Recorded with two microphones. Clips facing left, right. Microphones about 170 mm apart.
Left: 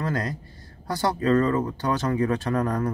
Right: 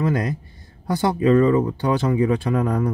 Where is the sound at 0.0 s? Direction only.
15° right (ahead or behind).